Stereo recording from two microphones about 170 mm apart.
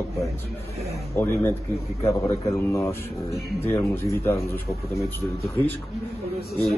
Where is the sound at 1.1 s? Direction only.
15° left (ahead or behind).